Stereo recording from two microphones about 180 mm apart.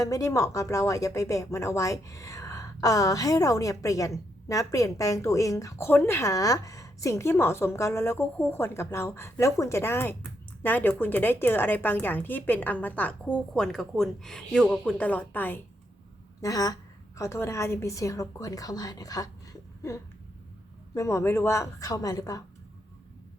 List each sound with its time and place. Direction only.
0.0 s speech: 20° left (ahead or behind)
20.9 s speech: 15° left (ahead or behind)